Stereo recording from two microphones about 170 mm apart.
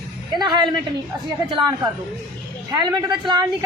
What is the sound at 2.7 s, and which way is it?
Speech, 25° right (ahead or behind).